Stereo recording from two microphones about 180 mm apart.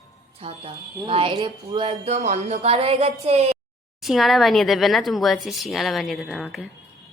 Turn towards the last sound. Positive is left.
turn(degrees=0)  # may be behind; listen again after turning